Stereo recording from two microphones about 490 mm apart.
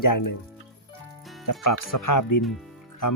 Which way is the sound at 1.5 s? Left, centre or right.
Left.